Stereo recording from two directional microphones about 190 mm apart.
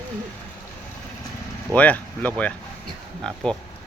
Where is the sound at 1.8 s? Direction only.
5° left (ahead or behind).